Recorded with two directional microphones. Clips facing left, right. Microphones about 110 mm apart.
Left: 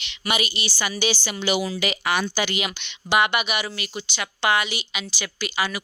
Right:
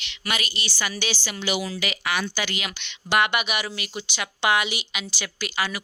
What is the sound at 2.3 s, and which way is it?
Speech, 20° left (ahead or behind).